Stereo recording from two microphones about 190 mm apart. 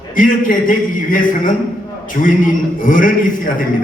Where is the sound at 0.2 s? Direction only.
45° left (ahead or behind).